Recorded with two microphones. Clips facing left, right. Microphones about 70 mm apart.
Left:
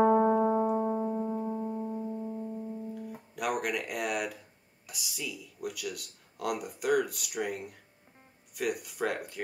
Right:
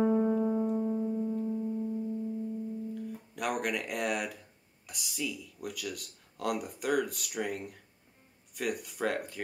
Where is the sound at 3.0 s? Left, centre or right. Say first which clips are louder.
Even; centre.